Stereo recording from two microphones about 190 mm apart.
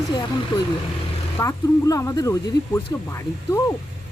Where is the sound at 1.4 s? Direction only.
15° left (ahead or behind).